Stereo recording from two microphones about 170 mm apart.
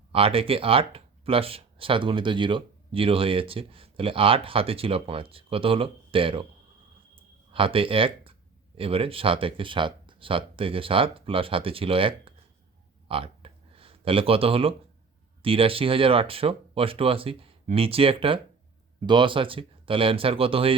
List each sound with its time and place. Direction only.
0.1 s speech: 35° right (ahead or behind)
7.5 s speech: 30° right (ahead or behind)
13.1 s a sound: 30° right (ahead or behind)
15.4 s speech: 30° right (ahead or behind)